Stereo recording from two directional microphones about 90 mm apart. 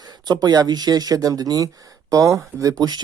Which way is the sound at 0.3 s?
45° right (ahead or behind).